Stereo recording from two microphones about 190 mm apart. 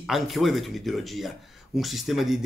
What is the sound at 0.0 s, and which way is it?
Speech, centre (ahead or behind).